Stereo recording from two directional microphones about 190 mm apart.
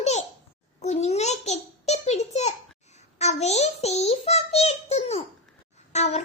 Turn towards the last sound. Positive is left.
turn(degrees=35)  # may be behind; listen again after turning